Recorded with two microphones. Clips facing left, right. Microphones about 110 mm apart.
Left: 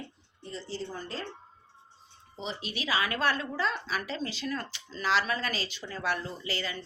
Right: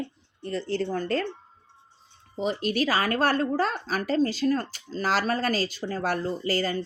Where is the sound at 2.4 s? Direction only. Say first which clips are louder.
Right 11 dB; 50° right (ahead or behind).